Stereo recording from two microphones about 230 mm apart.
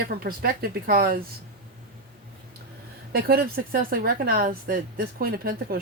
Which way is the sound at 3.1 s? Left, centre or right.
Right.